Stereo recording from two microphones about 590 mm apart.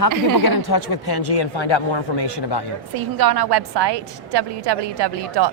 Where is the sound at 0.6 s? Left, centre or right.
Left.